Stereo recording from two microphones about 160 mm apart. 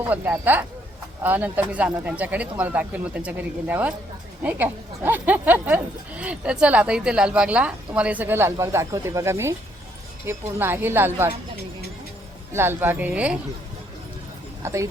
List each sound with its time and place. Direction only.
0.0 s speech: 10° right (ahead or behind)
12.5 s speech: 15° right (ahead or behind)
14.6 s speech: 20° right (ahead or behind)